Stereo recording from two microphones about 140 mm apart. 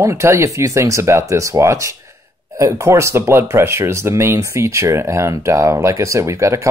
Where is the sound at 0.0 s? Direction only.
20° right (ahead or behind).